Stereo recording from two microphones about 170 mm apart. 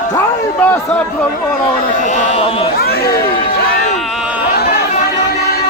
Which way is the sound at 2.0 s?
45° left (ahead or behind).